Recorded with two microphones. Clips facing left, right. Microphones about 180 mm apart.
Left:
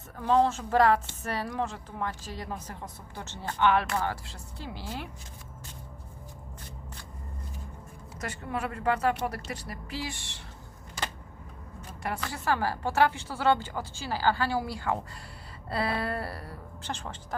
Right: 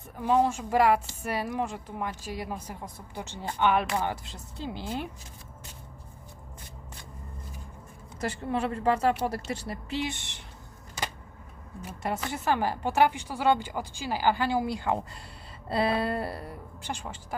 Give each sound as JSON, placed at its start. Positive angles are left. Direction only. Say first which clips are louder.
{"t": 0.2, "sound": "a woman's voice", "louder": "even", "side_deg": -10}
{"t": 8.2, "sound": "a woman's voice", "louder": "right 4 dB", "side_deg": -30}
{"t": 12.0, "sound": "a woman's voice", "louder": "right 2 dB", "side_deg": -20}